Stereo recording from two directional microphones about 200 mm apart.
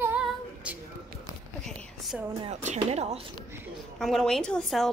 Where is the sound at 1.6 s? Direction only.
Centre (ahead or behind).